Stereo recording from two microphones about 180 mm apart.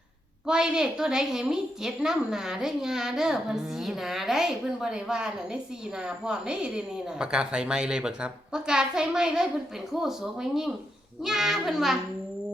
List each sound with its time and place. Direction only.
0.4 s a woman's voice: 5° right (ahead or behind)